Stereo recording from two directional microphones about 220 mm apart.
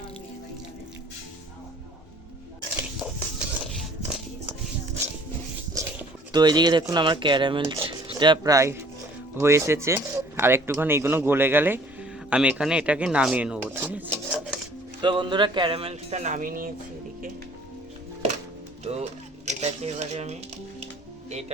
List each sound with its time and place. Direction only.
3.2 s a sound: 5° left (ahead or behind)
5.7 s speech: 15° right (ahead or behind)
15.0 s speech: 20° right (ahead or behind); by 16.7 s 40° right (ahead or behind)
18.9 s speech: 30° right (ahead or behind)